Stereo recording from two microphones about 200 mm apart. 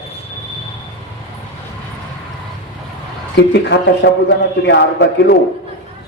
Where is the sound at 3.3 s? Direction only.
60° left (ahead or behind).